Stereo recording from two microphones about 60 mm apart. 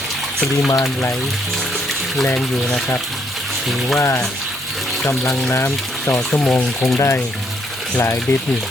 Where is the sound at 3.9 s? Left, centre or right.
Left.